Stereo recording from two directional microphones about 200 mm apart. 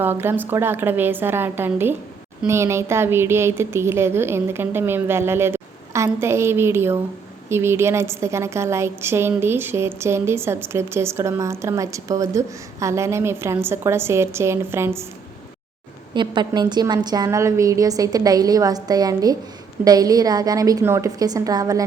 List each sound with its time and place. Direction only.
0.0 s a woman's voice: 10° right (ahead or behind)
16.1 s a woman's voice: 25° right (ahead or behind)